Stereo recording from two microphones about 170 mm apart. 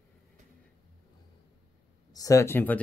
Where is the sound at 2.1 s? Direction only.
20° left (ahead or behind).